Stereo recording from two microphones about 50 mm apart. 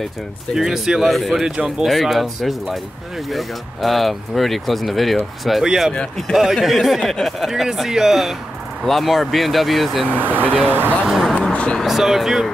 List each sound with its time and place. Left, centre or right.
0.6 s speech: centre
5.7 s speech: centre
5.9 s speech: centre
6.5 s speech: centre
10.0 s speech: right
11.1 s a sound: centre
11.4 s a sound: left
11.8 s speech: centre